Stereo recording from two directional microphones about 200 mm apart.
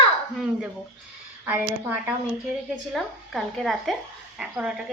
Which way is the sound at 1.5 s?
10° right (ahead or behind).